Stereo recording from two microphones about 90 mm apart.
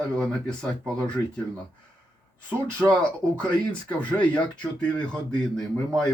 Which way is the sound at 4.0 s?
15° left (ahead or behind).